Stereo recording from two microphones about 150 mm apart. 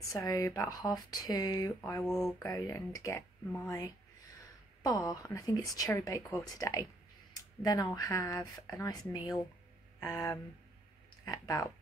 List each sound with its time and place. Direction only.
0.1 s a woman's voice: 20° left (ahead or behind)
2.0 s speech: centre (ahead or behind)
2.3 s a woman's voice: 20° left (ahead or behind)